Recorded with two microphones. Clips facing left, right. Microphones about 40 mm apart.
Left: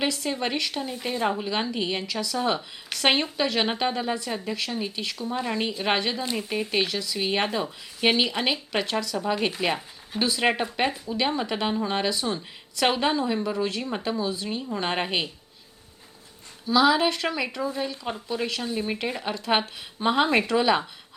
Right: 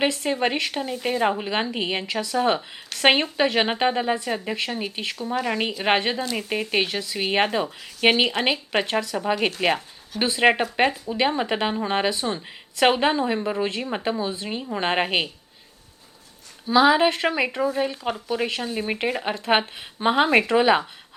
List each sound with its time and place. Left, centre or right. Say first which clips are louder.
0.0 s a woman's voice: right 4 dB; right
10.2 s a woman's voice: right 4 dB; right
16.6 s a woman's voice: right 3 dB; right